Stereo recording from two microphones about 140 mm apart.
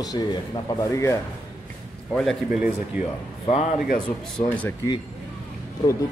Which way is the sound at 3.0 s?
10° right (ahead or behind).